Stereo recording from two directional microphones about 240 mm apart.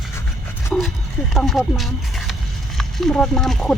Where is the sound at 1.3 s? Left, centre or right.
Centre.